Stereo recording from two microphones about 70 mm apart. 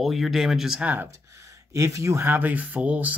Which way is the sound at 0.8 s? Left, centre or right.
Right.